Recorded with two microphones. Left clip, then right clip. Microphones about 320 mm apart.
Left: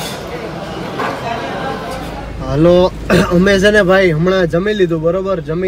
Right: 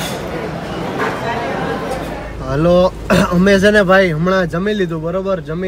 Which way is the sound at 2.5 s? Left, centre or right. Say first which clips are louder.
Left 2 dB; left.